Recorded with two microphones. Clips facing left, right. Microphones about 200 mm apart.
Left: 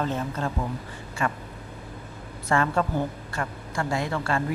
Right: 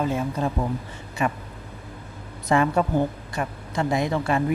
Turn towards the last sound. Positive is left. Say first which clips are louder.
# right 4 dB
turn(degrees=-15)  # may be behind; listen again after turning